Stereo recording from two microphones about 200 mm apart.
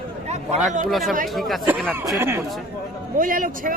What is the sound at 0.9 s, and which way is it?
Speech, centre (ahead or behind).